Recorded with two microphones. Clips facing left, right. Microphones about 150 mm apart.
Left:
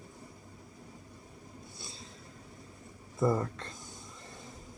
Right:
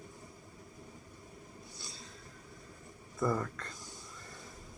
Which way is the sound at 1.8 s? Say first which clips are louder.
Left 2 dB; 25° left (ahead or behind).